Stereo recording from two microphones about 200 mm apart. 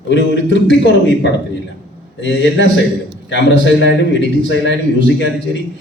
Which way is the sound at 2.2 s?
65° left (ahead or behind).